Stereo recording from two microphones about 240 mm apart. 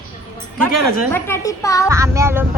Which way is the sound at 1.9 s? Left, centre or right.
Centre.